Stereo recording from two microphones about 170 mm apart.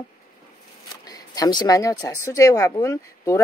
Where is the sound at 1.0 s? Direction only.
20° left (ahead or behind).